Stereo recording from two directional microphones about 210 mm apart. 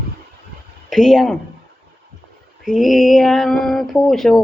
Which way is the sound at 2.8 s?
Centre (ahead or behind).